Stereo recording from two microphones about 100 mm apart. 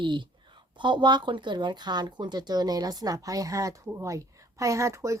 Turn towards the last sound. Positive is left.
turn(degrees=-30)  # may be behind; listen again after turning